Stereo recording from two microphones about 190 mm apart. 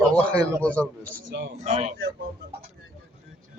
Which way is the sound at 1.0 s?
45° right (ahead or behind).